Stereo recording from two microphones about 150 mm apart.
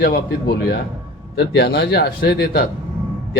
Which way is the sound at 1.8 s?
90° left.